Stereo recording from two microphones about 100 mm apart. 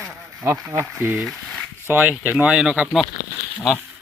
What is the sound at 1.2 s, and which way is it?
Speech, 5° left (ahead or behind).